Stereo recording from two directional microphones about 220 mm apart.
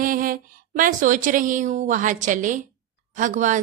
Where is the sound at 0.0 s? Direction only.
40° right (ahead or behind).